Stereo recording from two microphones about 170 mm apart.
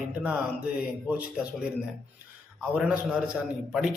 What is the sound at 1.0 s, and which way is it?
Speech, 5° right (ahead or behind).